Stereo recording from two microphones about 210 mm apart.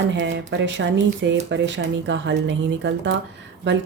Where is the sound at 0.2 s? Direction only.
60° right (ahead or behind).